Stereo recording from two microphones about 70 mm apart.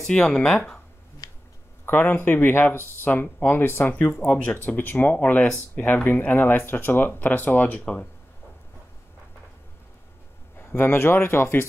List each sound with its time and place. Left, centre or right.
0.1 s speech: centre
1.2 s a sound: left
1.9 s speech: left
7.8 s speech: centre
10.6 s speech: left